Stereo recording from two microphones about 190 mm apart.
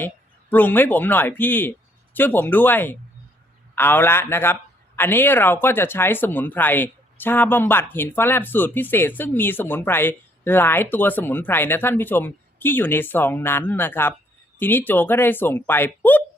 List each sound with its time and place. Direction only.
0.5 s speech: 10° left (ahead or behind)